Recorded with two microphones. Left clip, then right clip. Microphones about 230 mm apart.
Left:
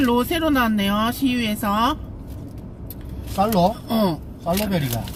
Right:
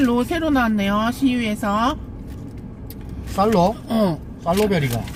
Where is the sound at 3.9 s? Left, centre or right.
Centre.